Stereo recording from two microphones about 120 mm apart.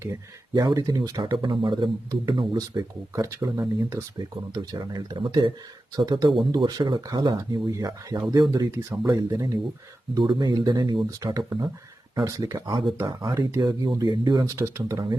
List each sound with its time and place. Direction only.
0.0 s speech: 25° right (ahead or behind)
1.2 s speech: 45° right (ahead or behind)
3.2 s speech: 30° right (ahead or behind)
10.2 s speech: 40° right (ahead or behind); by 15.0 s 25° right (ahead or behind)